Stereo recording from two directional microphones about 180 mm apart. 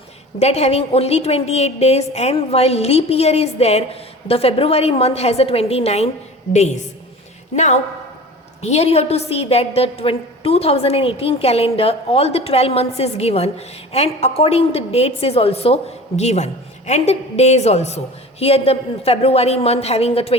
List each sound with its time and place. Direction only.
0.3 s a woman's voice: 35° left (ahead or behind)